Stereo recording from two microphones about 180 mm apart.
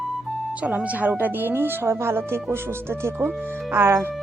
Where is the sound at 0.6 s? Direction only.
10° right (ahead or behind).